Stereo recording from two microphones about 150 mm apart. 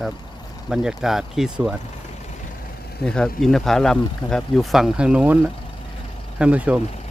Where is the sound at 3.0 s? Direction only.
5° left (ahead or behind).